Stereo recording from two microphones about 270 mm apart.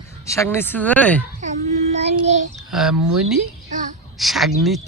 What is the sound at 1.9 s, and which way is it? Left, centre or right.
Child singing, right.